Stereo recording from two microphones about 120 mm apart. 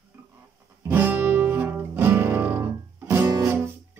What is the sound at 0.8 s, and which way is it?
Music, 15° right (ahead or behind).